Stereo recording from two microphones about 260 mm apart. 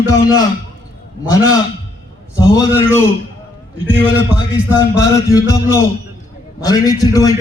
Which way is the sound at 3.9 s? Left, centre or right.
Centre.